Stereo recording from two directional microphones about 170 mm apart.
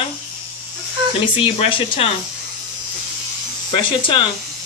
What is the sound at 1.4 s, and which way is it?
Speech, 30° left (ahead or behind).